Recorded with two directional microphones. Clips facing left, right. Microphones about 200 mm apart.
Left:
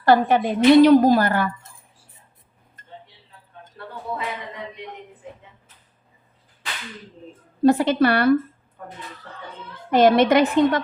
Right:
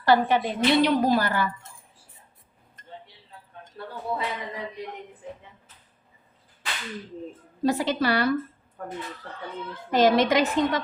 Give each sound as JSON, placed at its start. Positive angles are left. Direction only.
{"t": 0.0, "sound": "a woman's voice", "side_deg": 50}
{"t": 7.6, "sound": "a woman's voice", "side_deg": 55}
{"t": 9.9, "sound": "a woman's voice", "side_deg": 55}